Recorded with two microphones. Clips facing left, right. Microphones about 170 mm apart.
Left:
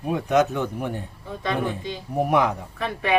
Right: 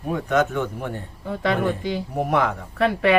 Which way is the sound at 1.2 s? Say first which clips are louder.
Right 4 dB; 75° right (ahead or behind).